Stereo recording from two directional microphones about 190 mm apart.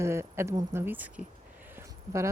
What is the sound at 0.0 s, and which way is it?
Speech, 15° right (ahead or behind).